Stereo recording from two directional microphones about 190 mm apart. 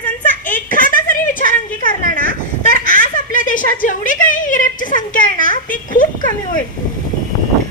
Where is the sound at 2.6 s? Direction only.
45° left (ahead or behind).